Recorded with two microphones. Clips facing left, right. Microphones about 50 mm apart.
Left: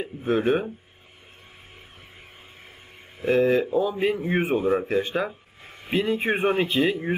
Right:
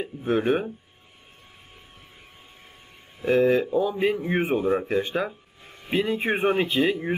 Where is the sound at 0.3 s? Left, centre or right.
Centre.